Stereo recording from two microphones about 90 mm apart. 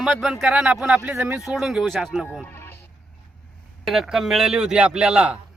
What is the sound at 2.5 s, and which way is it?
Sheep, 25° left (ahead or behind).